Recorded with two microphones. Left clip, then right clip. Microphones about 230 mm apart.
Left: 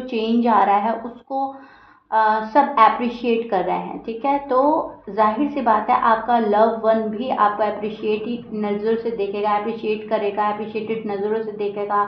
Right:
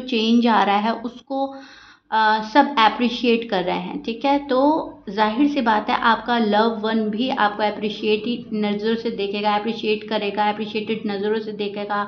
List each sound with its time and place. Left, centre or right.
0.1 s a woman's voice: right